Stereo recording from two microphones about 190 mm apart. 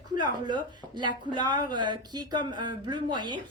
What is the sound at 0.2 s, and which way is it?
Speech, 25° right (ahead or behind).